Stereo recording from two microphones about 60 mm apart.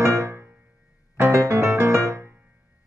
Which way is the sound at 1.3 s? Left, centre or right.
Right.